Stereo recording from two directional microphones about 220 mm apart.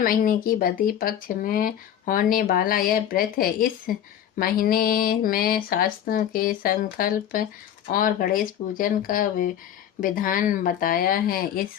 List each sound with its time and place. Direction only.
0.0 s speech: 40° left (ahead or behind)